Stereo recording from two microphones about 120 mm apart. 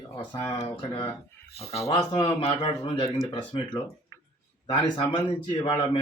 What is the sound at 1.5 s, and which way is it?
Speech, 60° left (ahead or behind).